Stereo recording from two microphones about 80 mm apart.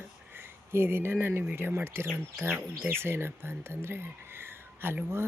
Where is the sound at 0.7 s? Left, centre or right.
Right.